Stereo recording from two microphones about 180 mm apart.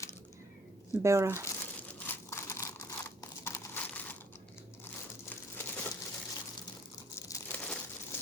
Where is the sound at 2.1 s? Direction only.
15° left (ahead or behind).